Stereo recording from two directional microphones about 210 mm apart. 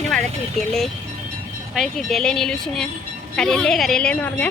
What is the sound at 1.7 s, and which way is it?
Speech, centre (ahead or behind).